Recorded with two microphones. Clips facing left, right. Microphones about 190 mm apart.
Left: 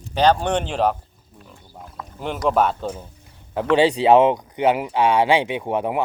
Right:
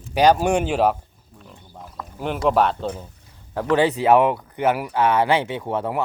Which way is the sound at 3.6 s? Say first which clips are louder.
Left 2 dB; 15° left (ahead or behind).